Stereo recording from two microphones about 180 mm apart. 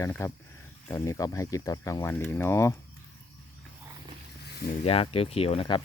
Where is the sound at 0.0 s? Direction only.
15° left (ahead or behind).